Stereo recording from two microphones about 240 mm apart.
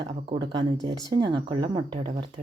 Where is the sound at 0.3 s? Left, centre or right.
Centre.